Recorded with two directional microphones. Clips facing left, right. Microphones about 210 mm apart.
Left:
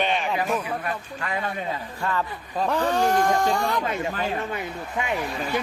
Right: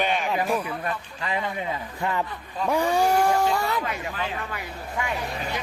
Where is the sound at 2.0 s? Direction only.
15° right (ahead or behind).